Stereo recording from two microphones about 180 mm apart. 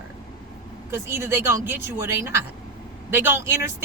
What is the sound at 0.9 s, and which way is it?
Speech, 15° right (ahead or behind).